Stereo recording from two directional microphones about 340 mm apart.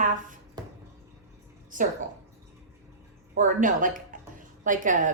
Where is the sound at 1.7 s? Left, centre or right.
Right.